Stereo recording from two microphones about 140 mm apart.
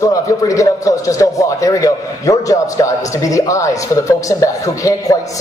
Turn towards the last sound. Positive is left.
turn(degrees=25)  # may be behind; listen again after turning